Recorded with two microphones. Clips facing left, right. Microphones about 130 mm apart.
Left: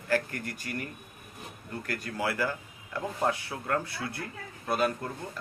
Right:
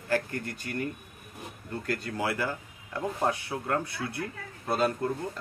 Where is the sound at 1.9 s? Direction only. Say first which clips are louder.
Right 2 dB; 25° right (ahead or behind).